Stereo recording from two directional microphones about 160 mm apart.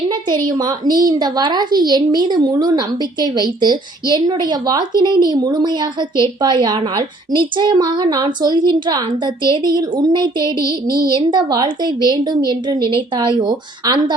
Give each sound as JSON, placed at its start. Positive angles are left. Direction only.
{"t": 0.4, "sound": "a woman's voice", "side_deg": -25}